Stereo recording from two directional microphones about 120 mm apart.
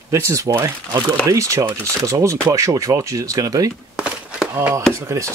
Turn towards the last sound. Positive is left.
turn(degrees=-25)  # may be behind; listen again after turning